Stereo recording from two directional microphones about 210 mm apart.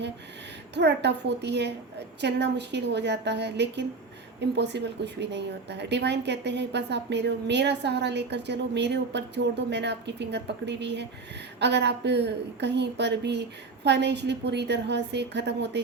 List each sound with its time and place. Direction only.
0.7 s a woman's voice: 55° right (ahead or behind)